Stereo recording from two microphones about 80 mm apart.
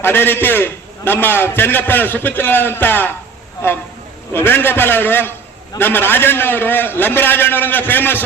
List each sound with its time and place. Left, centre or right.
0.0 s a man's voice: left
4.3 s a man's voice: left